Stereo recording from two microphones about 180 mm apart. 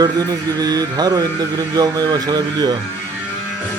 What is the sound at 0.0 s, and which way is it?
A man's voice, 20° right (ahead or behind).